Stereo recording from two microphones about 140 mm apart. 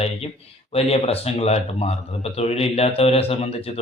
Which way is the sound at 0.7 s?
45° left (ahead or behind).